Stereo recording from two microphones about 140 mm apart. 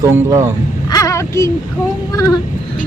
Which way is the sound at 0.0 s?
20° right (ahead or behind).